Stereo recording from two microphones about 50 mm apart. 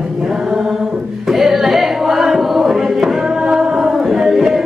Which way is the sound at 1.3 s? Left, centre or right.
Centre.